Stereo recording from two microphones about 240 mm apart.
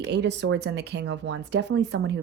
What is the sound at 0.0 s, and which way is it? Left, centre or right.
Speech, right.